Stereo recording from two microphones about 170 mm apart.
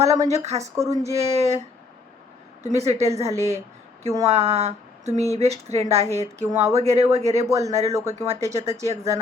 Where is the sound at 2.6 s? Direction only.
40° right (ahead or behind).